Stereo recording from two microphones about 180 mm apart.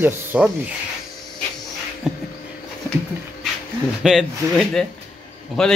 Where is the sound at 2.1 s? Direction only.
5° right (ahead or behind).